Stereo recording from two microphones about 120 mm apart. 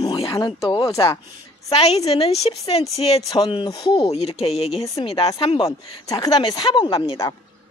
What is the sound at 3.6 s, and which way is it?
Speech, 30° left (ahead or behind).